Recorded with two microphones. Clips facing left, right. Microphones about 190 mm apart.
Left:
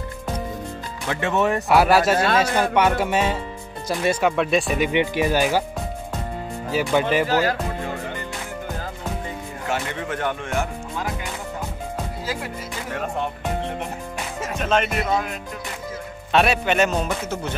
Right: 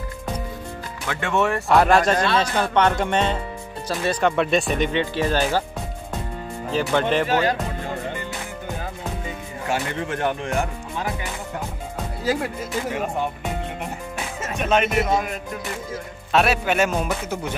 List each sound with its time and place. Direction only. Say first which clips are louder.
1.0 s speech: left 1 dB; 20° left (ahead or behind)
1.7 s speech: even; 5° left (ahead or behind)
6.7 s speech: left 1 dB; 10° left (ahead or behind)
10.2 s speech: right 2 dB; 30° right (ahead or behind)
14.4 s music: right 1 dB; 5° right (ahead or behind)
16.3 s a man's voice: left 1 dB; centre (ahead or behind)